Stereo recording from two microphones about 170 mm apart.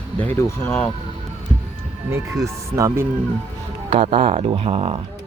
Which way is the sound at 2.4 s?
15° right (ahead or behind).